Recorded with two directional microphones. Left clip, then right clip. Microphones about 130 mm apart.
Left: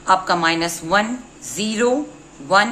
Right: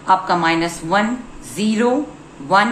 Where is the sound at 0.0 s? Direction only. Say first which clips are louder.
Right 1 dB; 35° left (ahead or behind).